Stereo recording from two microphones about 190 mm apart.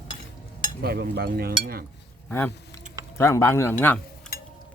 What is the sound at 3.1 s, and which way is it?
Speech, 15° left (ahead or behind).